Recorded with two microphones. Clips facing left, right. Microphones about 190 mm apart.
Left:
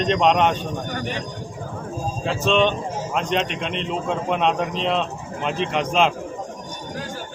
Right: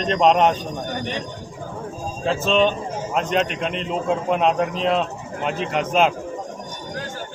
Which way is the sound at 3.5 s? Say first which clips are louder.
Right 1 dB; 45° right (ahead or behind).